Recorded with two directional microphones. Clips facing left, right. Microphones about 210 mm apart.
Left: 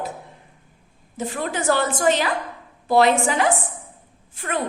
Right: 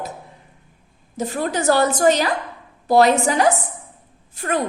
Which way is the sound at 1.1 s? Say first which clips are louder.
Right 4 dB; 40° right (ahead or behind).